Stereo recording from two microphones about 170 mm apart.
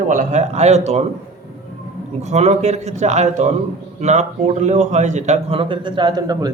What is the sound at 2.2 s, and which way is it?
A man's voice, 40° right (ahead or behind).